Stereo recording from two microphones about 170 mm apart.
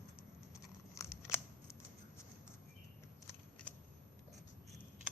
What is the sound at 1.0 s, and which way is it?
Scissors, 15° left (ahead or behind).